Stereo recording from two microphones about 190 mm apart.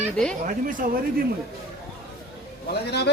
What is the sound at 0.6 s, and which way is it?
Speech, 45° right (ahead or behind).